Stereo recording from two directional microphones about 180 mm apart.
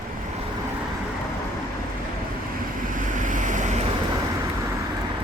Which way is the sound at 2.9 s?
45° right (ahead or behind).